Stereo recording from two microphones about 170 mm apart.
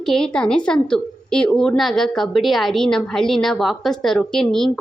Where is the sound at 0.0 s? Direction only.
5° left (ahead or behind).